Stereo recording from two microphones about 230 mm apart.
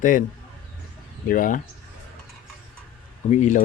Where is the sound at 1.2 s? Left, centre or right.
Left.